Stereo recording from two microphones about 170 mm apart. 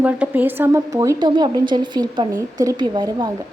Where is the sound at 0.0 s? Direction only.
10° right (ahead or behind).